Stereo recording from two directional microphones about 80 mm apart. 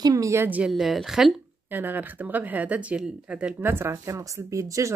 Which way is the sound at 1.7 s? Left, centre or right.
Right.